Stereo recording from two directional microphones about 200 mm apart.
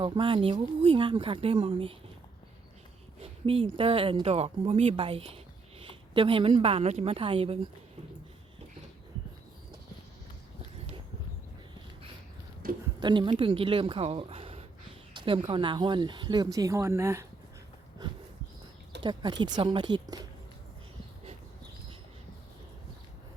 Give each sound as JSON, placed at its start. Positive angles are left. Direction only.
{"t": 0.0, "sound": "speech", "side_deg": -25}
{"t": 3.4, "sound": "a woman's voice", "side_deg": -25}
{"t": 12.6, "sound": "a sound", "side_deg": -45}
{"t": 13.0, "sound": "speech", "side_deg": -25}
{"t": 18.0, "sound": "dog", "side_deg": -20}
{"t": 19.0, "sound": "speech", "side_deg": -20}